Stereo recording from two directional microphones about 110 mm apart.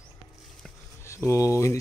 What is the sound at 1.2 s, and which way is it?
Speech, 25° left (ahead or behind).